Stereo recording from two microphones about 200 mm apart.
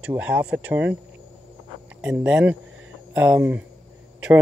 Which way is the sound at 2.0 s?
5° right (ahead or behind).